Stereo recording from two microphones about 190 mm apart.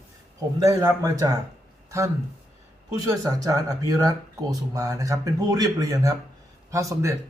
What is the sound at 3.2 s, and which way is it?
Speech, 20° right (ahead or behind).